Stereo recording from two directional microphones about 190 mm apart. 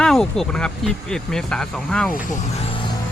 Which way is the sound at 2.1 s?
45° left (ahead or behind).